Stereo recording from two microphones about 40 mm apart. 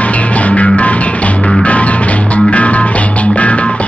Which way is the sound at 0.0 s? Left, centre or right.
Left.